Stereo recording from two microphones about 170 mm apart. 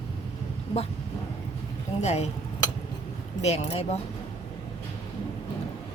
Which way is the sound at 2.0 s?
40° left (ahead or behind).